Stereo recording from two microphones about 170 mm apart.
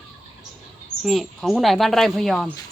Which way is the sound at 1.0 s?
Centre (ahead or behind).